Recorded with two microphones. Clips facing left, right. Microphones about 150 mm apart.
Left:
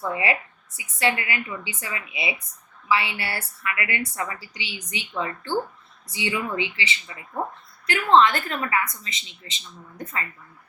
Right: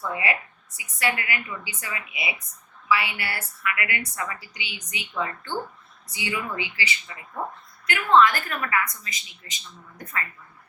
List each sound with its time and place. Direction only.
0.1 s a woman's voice: 25° left (ahead or behind)